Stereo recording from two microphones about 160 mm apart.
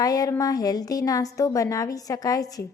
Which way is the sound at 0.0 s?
20° left (ahead or behind).